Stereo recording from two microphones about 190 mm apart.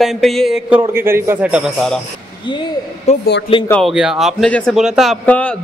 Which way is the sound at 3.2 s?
60° left (ahead or behind).